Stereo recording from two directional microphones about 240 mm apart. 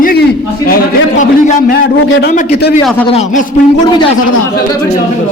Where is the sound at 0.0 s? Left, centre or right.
Left.